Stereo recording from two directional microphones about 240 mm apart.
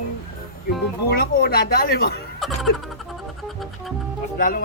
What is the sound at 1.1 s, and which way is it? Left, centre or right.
Speech, left.